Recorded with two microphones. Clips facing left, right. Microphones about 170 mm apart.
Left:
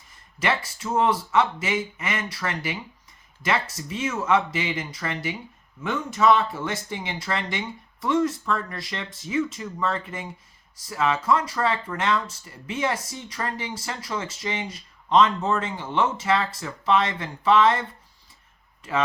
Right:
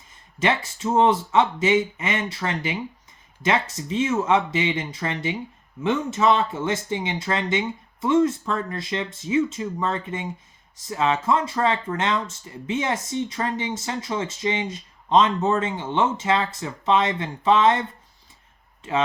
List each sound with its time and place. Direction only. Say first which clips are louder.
0.3 s speech: right 3 dB; 25° right (ahead or behind)